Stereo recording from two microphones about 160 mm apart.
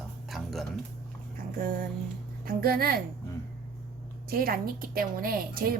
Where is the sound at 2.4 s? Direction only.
65° right (ahead or behind).